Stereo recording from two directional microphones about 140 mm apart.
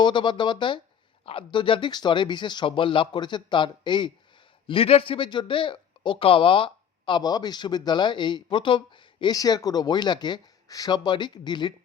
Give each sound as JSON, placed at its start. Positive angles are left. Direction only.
{"t": 0.0, "sound": "speech", "side_deg": 35}